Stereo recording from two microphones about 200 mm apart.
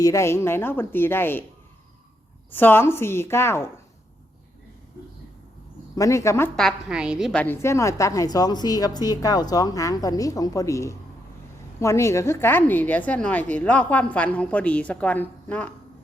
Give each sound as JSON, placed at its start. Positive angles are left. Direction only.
{"t": 0.0, "sound": "a woman's voice", "side_deg": 15}
{"t": 2.5, "sound": "a woman's voice", "side_deg": 10}
{"t": 6.0, "sound": "a woman's voice", "side_deg": 15}
{"t": 7.4, "sound": "a woman's voice", "side_deg": 10}